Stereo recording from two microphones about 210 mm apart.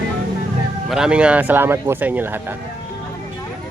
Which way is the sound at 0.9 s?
5° right (ahead or behind).